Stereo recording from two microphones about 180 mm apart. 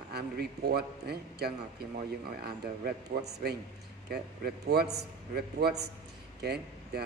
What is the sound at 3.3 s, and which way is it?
A man's voice, 65° right (ahead or behind).